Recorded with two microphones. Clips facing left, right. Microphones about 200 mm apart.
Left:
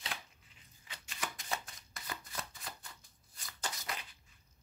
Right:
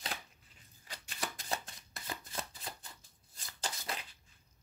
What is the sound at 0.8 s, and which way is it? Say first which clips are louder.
Shuffling cards: right 1 dB; 35° right (ahead or behind).